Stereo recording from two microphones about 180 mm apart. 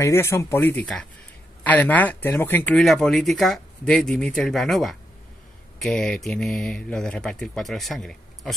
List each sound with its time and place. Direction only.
0.0 s speech: 15° left (ahead or behind)